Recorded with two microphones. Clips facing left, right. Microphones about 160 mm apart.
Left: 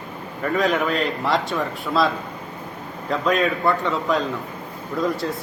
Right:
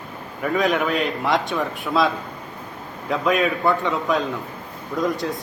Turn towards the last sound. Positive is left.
turn(degrees=0)  # may be behind; listen again after turning